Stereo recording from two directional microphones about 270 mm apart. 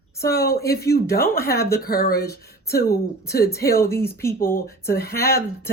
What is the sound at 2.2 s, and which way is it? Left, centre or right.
Speech, centre.